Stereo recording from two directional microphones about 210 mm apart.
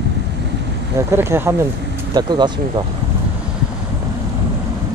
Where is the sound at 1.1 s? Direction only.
10° right (ahead or behind).